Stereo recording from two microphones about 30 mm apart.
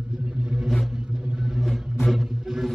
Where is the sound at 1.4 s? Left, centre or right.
Centre.